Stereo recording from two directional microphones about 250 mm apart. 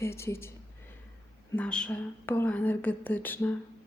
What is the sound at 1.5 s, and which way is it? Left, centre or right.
Speech, centre.